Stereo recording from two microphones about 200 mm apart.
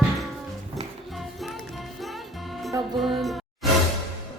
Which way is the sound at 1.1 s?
Centre (ahead or behind).